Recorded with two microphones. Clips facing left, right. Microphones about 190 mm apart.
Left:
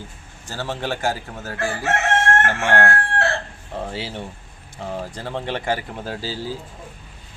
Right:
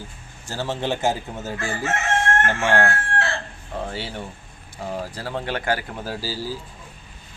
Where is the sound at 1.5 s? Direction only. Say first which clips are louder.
Left 4 dB; 70° left (ahead or behind).